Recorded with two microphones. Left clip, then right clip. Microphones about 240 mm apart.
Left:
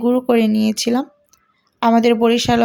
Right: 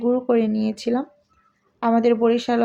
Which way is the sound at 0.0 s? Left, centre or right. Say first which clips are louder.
Left 4 dB; left.